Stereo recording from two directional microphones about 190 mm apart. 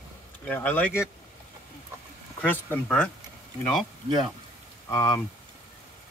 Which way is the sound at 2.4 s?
10° left (ahead or behind).